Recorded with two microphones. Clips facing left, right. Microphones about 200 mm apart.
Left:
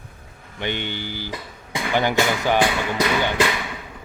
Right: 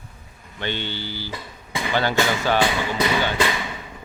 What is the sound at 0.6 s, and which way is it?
Speech, 15° left (ahead or behind).